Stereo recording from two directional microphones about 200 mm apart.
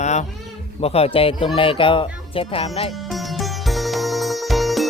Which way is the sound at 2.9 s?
Centre (ahead or behind).